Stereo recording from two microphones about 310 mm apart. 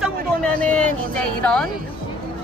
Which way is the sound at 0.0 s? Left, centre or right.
Centre.